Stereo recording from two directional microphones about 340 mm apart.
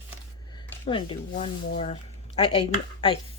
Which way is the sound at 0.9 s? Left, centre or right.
Centre.